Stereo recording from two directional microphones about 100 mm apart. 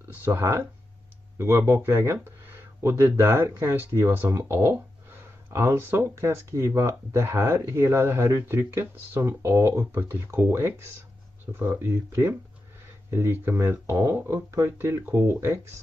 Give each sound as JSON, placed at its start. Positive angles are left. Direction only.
{"t": 0.1, "sound": "speech", "side_deg": -25}